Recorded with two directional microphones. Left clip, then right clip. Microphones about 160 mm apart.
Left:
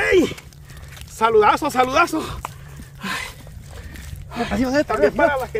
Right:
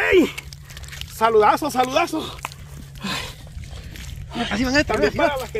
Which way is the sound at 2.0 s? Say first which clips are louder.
Left 2 dB; 5° right (ahead or behind).